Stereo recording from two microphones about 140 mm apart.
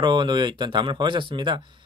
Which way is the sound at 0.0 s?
35° right (ahead or behind).